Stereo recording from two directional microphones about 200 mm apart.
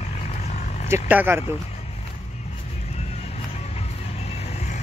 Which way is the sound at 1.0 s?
10° right (ahead or behind).